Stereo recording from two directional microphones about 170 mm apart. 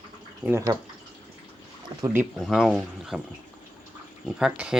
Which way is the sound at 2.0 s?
15° right (ahead or behind).